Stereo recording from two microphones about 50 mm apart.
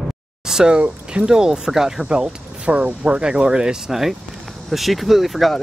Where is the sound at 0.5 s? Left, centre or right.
Centre.